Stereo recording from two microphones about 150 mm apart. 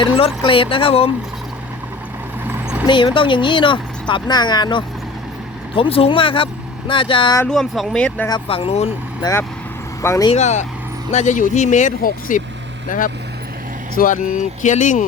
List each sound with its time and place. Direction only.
0.2 s speech: 35° left (ahead or behind)
2.5 s vehicle: 10° right (ahead or behind)
2.8 s speech: 35° left (ahead or behind)
7.4 s speech: 5° left (ahead or behind)
8.3 s speech: 40° left (ahead or behind)
9.2 s speech: 30° left (ahead or behind)
10.0 s speech: 20° left (ahead or behind)
10.3 s speech: 50° left (ahead or behind)